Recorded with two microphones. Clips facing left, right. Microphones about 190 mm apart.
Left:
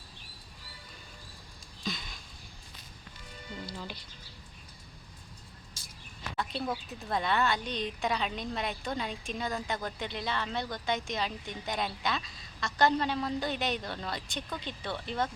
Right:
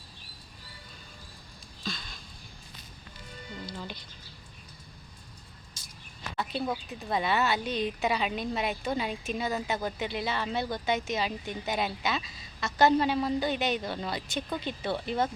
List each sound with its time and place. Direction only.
1.8 s a sound: 15° left (ahead or behind)
3.7 s speech: 5° left (ahead or behind)
6.3 s a woman's voice: 5° right (ahead or behind)